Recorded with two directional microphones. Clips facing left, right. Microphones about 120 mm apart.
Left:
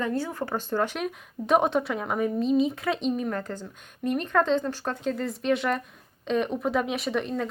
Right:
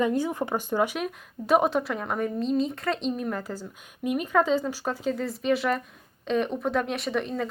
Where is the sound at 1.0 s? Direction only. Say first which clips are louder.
Left 1 dB; centre (ahead or behind).